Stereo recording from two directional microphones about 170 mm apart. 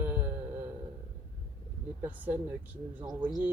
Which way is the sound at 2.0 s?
10° right (ahead or behind).